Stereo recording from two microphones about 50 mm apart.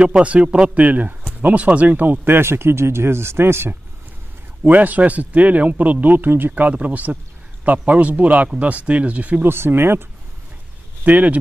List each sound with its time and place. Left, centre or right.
0.2 s speech: right
0.8 s speech: right
4.6 s speech: right
6.5 s speech: right
9.4 s speech: right
11.1 s speech: right